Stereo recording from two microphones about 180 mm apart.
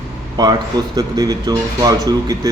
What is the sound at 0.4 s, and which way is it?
Speech, 20° right (ahead or behind).